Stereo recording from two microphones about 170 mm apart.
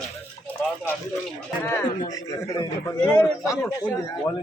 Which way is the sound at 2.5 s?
20° left (ahead or behind).